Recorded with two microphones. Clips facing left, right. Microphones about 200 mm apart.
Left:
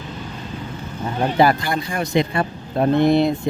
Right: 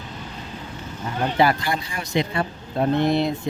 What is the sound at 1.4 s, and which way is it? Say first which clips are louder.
Speech: left 3 dB; 45° left (ahead or behind).